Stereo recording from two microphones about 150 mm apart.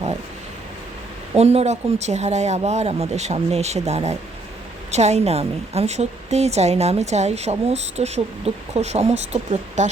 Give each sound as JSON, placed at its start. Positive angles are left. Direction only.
{"t": 1.4, "sound": "a woman's voice", "side_deg": -45}